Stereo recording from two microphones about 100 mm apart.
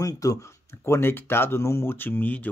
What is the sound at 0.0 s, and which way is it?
Speech, 35° left (ahead or behind).